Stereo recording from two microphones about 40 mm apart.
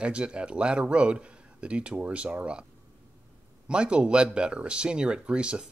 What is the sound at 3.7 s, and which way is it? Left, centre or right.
Speech, right.